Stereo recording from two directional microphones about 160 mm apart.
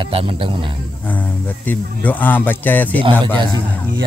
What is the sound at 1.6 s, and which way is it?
Speech, 10° left (ahead or behind).